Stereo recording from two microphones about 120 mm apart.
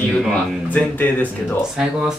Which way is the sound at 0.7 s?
15° left (ahead or behind).